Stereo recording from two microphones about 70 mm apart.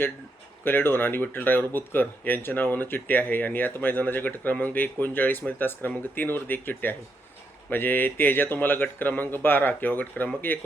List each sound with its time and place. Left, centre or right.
0.6 s speech: left